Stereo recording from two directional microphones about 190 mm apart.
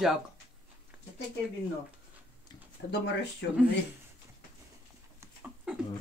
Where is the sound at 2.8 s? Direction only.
60° left (ahead or behind).